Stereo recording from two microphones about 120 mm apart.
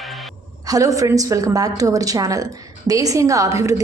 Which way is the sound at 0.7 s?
30° right (ahead or behind).